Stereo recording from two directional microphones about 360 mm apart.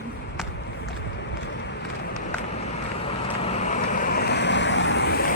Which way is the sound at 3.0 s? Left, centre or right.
Centre.